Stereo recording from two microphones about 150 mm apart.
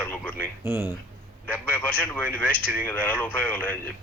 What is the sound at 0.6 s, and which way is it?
Speech, 15° right (ahead or behind).